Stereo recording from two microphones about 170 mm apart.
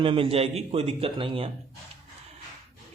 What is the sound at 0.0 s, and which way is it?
Speech, 30° right (ahead or behind).